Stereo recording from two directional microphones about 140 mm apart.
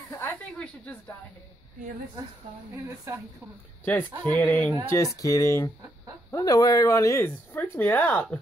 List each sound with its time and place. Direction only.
0.1 s a sound: 15° left (ahead or behind)
0.6 s speech: 10° left (ahead or behind)
3.8 s speech: 10° left (ahead or behind)
4.8 s speech: 20° left (ahead or behind)